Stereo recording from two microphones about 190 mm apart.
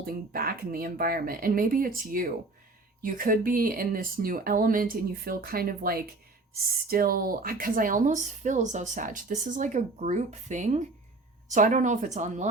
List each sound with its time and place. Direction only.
0.0 s speech: 50° right (ahead or behind)